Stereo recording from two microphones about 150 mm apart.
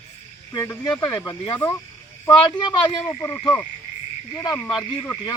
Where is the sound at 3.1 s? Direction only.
15° left (ahead or behind).